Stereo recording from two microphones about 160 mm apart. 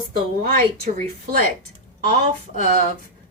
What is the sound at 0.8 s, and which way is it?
Speech, 60° right (ahead or behind).